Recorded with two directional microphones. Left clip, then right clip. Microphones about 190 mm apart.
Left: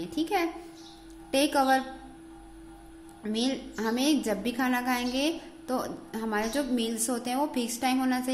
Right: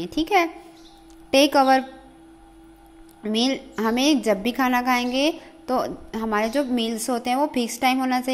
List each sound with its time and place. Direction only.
0.0 s a child's voice: 30° right (ahead or behind)
3.2 s a woman's voice: 30° right (ahead or behind)